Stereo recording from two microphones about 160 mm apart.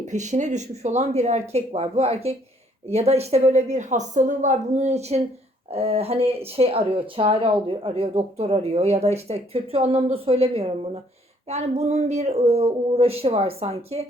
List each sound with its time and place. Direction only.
0.0 s speech: 50° right (ahead or behind)